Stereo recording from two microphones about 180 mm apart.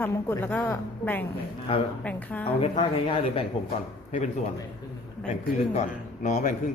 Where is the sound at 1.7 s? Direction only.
30° left (ahead or behind).